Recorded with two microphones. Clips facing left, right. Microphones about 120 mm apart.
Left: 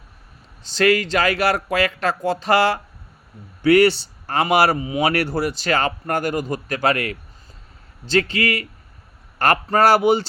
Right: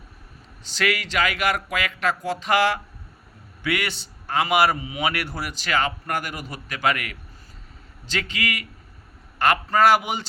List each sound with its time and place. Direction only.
0.6 s a man's voice: 35° left (ahead or behind)